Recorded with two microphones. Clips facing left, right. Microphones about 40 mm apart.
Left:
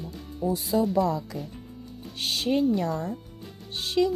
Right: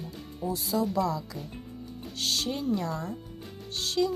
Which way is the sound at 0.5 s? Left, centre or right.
Left.